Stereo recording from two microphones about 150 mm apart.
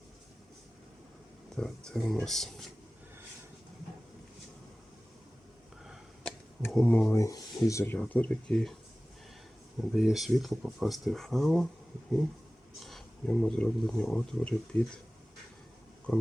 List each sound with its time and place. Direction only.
1.5 s speech: 5° left (ahead or behind)
5.8 s a sound: 5° right (ahead or behind)
6.7 s speech: 5° left (ahead or behind)
7.2 s speech: 20° left (ahead or behind)
7.9 s speech: 10° left (ahead or behind)
9.9 s speech: centre (ahead or behind)
12.8 s speech: 5° left (ahead or behind)